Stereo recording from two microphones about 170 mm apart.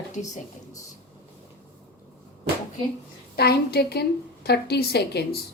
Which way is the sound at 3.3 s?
70° left (ahead or behind).